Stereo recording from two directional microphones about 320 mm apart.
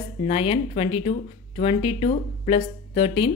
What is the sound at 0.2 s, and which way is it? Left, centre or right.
Speech, centre.